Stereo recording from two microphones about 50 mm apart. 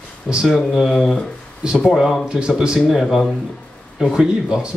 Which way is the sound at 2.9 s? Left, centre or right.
Centre.